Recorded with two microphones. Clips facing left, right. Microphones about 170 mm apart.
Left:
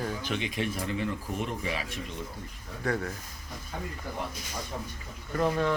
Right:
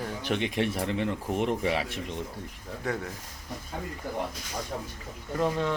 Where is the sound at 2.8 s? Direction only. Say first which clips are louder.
Left 2 dB; 15° right (ahead or behind).